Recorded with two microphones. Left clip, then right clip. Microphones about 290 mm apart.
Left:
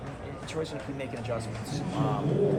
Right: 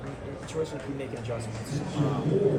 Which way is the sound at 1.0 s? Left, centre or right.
Centre.